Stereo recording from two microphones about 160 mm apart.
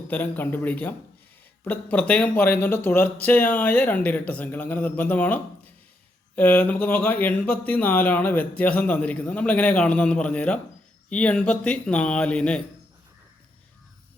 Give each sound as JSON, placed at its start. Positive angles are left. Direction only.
{"t": 0.1, "sound": "speech", "side_deg": 10}